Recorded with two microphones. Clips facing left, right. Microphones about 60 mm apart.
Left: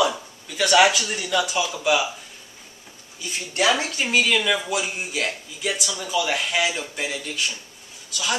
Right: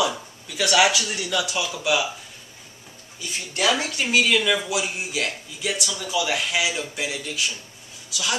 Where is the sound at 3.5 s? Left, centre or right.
Centre.